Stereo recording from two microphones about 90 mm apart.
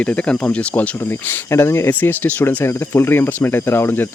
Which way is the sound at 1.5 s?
30° left (ahead or behind).